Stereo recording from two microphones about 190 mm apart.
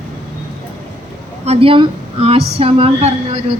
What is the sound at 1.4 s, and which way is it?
A woman's voice, 30° right (ahead or behind).